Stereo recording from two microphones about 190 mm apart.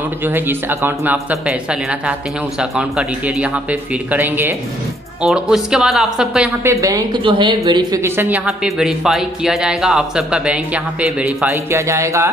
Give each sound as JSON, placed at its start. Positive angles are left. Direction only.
{"t": 0.2, "sound": "a woman's voice", "side_deg": -10}